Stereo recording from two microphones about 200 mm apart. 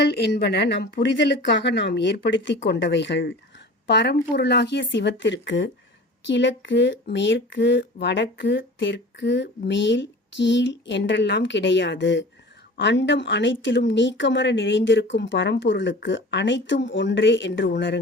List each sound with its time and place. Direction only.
0.0 s speech: 60° left (ahead or behind)